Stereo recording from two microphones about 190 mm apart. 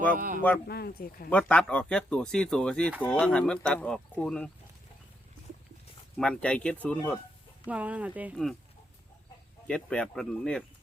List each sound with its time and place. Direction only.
0.1 s speech: 45° right (ahead or behind)
0.7 s speech: 55° left (ahead or behind)
1.3 s speech: 5° left (ahead or behind)
6.1 s speech: 5° left (ahead or behind)
7.7 s speech: 5° right (ahead or behind)
9.6 s speech: 5° left (ahead or behind)